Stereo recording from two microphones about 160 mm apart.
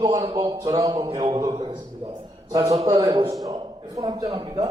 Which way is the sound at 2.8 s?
25° right (ahead or behind).